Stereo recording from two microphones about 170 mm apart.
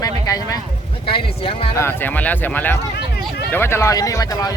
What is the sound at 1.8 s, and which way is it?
Speech, 15° left (ahead or behind).